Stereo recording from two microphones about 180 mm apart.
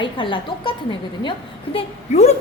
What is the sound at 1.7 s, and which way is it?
Speech, 40° left (ahead or behind).